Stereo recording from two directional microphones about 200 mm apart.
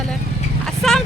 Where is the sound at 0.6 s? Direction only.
Centre (ahead or behind).